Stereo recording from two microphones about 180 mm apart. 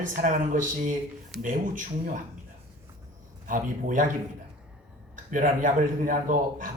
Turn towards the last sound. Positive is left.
turn(degrees=-45)  # may be behind; listen again after turning